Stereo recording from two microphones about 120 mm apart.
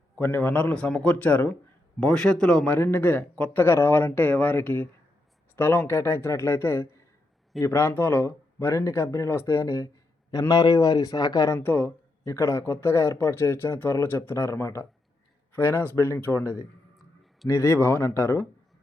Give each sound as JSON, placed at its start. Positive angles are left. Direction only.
{"t": 0.2, "sound": "a man's voice", "side_deg": 15}
{"t": 10.5, "sound": "speech", "side_deg": 35}